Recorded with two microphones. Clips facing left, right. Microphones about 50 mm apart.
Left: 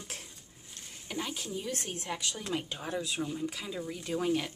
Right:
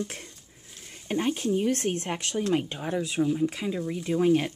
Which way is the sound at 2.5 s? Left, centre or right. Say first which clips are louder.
Right 7 dB; right.